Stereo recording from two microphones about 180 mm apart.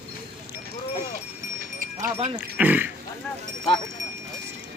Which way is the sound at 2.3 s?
10° right (ahead or behind).